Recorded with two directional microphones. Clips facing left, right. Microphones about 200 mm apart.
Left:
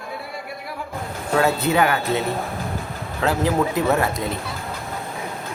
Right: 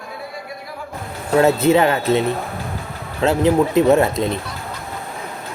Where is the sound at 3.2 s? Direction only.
20° right (ahead or behind).